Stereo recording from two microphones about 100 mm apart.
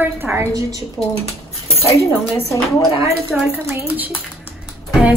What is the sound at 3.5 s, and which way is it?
Speech, 15° right (ahead or behind).